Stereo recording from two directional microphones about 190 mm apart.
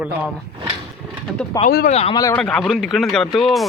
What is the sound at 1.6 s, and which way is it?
Speech, 20° left (ahead or behind).